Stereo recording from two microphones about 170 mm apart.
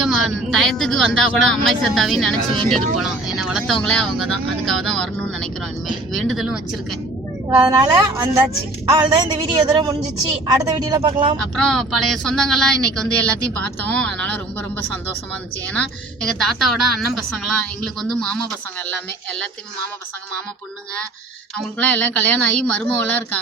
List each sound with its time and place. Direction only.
0.0 s speech: centre (ahead or behind)
7.5 s a woman's voice: 20° right (ahead or behind)
11.5 s a woman's voice: 5° left (ahead or behind)
22.0 s a woman's voice: 10° left (ahead or behind)